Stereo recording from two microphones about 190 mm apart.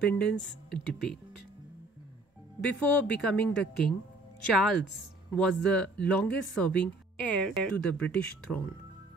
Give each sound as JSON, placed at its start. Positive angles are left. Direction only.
{"t": 0.0, "sound": "speech", "side_deg": 5}
{"t": 2.8, "sound": "speech", "side_deg": 5}